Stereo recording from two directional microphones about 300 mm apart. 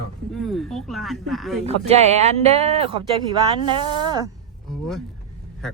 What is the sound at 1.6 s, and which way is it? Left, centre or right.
Speech, right.